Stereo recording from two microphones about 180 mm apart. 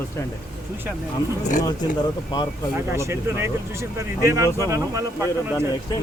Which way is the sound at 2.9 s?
15° right (ahead or behind).